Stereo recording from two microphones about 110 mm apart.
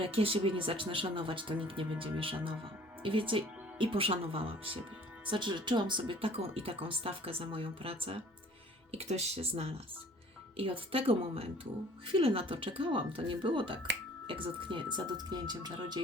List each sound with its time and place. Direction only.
0.0 s speech: 55° right (ahead or behind)
5.3 s speech: 45° right (ahead or behind)
8.9 s speech: 80° right; by 16.0 s 40° right (ahead or behind)